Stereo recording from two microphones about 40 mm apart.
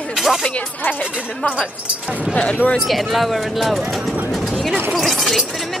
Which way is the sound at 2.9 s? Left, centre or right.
Centre.